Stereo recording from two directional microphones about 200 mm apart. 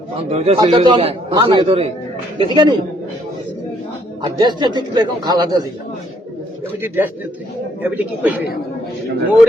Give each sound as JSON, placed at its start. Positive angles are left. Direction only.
{"t": 0.2, "sound": "a man's voice", "side_deg": -30}
{"t": 4.2, "sound": "a man's voice", "side_deg": -20}
{"t": 6.8, "sound": "a man's voice", "side_deg": -10}